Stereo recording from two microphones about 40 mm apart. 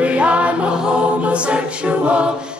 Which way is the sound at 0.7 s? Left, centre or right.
Right.